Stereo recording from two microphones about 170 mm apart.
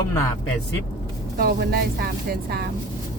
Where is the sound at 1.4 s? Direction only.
70° right (ahead or behind).